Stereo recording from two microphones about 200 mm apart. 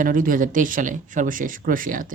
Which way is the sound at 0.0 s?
45° right (ahead or behind).